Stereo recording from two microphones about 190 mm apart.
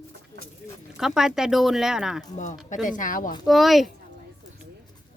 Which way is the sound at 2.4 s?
40° left (ahead or behind).